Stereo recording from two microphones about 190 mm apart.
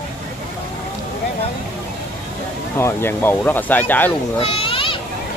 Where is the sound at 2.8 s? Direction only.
10° left (ahead or behind).